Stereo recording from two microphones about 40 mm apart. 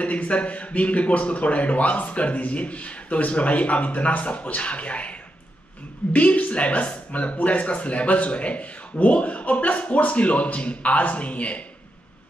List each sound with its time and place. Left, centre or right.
0.0 s a man's voice: left
6.1 s a man's voice: left